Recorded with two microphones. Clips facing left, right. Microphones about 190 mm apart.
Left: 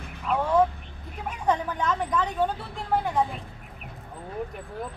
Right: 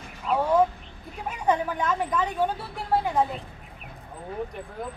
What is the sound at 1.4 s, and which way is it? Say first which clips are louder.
Speech: right 1 dB; 10° right (ahead or behind).